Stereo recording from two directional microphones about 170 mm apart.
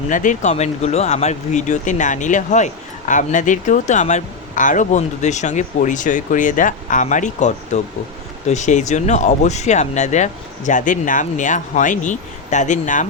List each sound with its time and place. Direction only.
0.1 s speech: 50° left (ahead or behind)